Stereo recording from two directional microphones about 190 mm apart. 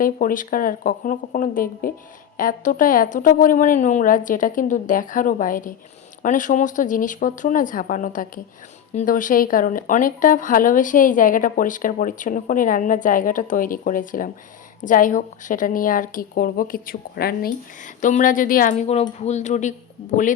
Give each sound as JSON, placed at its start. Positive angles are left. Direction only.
{"t": 0.0, "sound": "speech", "side_deg": 45}